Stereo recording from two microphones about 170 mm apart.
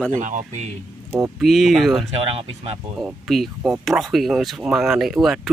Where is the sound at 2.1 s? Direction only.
35° right (ahead or behind).